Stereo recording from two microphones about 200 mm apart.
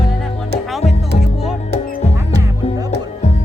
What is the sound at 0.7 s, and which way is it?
Music, centre (ahead or behind).